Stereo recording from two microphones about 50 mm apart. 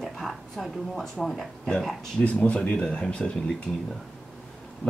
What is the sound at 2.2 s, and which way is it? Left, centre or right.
Speech, left.